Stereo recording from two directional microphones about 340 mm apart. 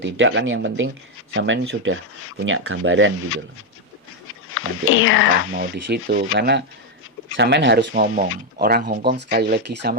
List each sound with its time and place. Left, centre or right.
0.0 s speech: right
4.4 s speech: left
5.5 s speech: right